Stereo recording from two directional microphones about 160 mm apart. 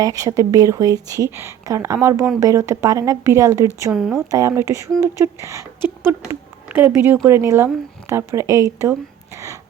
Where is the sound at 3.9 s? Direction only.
Centre (ahead or behind).